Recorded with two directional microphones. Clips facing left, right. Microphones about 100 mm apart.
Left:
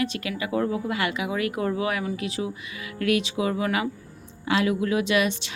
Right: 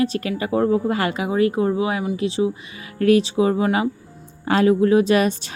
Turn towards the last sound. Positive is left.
turn(degrees=-40)  # may be behind; listen again after turning